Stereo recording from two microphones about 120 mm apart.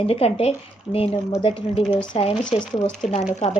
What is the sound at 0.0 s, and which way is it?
A woman's voice, 55° left (ahead or behind).